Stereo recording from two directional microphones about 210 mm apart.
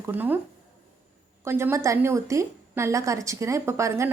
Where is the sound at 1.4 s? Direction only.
10° right (ahead or behind).